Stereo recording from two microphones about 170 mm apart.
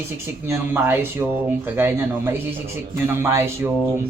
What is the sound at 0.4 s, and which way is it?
Speech, 15° right (ahead or behind).